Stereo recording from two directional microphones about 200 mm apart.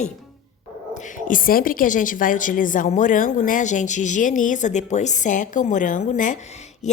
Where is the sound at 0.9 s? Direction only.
40° left (ahead or behind).